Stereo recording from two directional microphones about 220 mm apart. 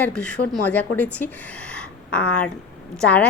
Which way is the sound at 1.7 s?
5° left (ahead or behind).